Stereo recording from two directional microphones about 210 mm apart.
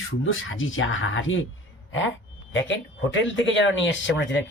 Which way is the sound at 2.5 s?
60° left (ahead or behind).